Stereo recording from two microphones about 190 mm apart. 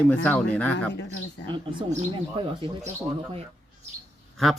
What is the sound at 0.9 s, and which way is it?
Speech, 65° left (ahead or behind).